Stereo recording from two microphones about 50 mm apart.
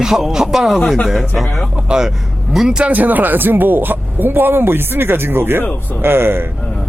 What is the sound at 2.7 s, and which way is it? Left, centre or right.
Speech, centre.